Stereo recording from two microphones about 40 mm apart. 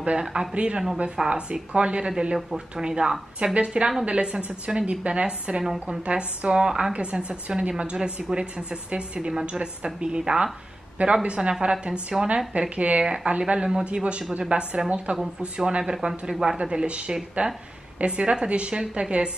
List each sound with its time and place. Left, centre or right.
0.2 s speech: centre
5.6 s speech: centre
6.0 s speech: right
12.5 s speech: right
13.0 s speech: right
16.5 s speech: right